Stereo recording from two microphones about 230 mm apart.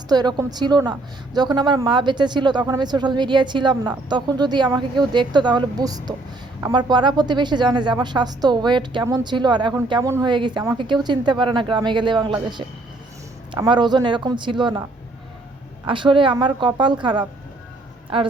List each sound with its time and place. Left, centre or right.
0.1 s a woman's voice: centre
15.9 s a woman's voice: right